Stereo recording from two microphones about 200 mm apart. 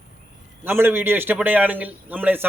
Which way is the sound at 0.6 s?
10° right (ahead or behind).